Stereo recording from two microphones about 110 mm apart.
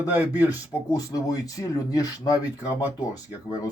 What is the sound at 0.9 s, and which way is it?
Speech, 35° left (ahead or behind).